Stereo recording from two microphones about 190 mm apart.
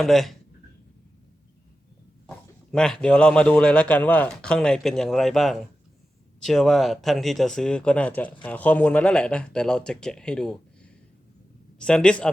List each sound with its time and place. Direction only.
0.0 s a man's voice: centre (ahead or behind)
2.7 s a man's voice: 5° left (ahead or behind)